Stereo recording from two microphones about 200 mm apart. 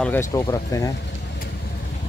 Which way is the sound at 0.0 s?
10° left (ahead or behind).